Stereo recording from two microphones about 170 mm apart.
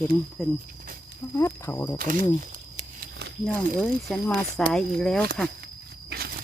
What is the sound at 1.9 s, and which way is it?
Speech, 50° right (ahead or behind).